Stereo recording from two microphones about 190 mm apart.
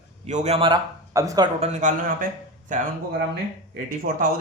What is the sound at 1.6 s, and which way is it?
Speech, 40° right (ahead or behind).